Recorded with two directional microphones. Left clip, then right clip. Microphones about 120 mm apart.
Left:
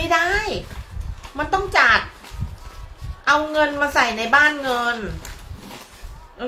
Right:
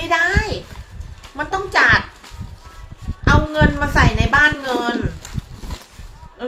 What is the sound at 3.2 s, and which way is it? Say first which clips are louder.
A woman's voice: right 1 dB; 15° left (ahead or behind).